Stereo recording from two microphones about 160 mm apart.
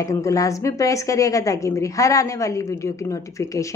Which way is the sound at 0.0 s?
20° left (ahead or behind).